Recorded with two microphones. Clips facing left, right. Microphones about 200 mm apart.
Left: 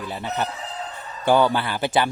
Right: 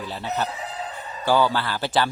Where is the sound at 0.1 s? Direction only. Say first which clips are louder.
Even; 15° left (ahead or behind).